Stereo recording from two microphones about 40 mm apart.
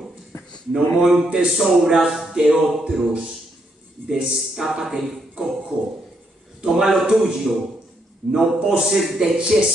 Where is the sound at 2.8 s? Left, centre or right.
Right.